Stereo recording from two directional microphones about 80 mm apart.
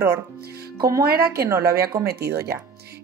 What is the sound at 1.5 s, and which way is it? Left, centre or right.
Speech, right.